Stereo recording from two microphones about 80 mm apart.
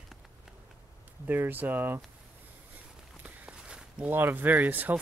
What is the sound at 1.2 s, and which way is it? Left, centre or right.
Speech, right.